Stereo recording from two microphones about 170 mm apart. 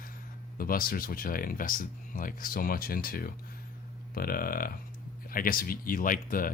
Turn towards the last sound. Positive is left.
turn(degrees=55)  # may be behind; listen again after turning